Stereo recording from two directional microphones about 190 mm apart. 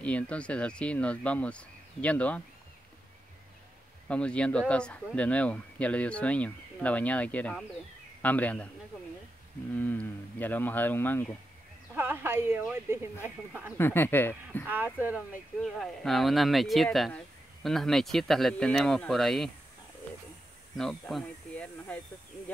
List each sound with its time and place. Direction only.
0.0 s speech: 5° left (ahead or behind)
4.1 s speech: 5° left (ahead or behind)
9.8 s speech: 10° left (ahead or behind)
11.9 s speech: 10° right (ahead or behind)
13.7 s speech: 10° left (ahead or behind)
14.7 s speech: 10° right (ahead or behind)
20.7 s speech: centre (ahead or behind)